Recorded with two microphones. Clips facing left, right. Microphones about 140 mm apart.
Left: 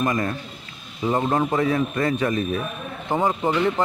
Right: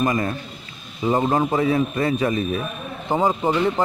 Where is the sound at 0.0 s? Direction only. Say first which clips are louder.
Right 2 dB; 10° right (ahead or behind).